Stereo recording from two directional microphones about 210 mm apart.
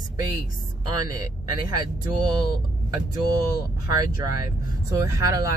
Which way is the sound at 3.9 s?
15° right (ahead or behind).